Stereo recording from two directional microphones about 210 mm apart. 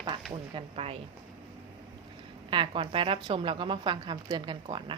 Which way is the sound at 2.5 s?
25° right (ahead or behind).